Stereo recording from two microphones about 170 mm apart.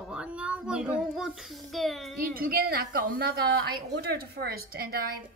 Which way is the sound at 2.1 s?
60° right (ahead or behind).